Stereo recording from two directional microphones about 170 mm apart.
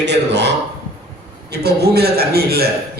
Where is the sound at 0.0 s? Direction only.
85° right.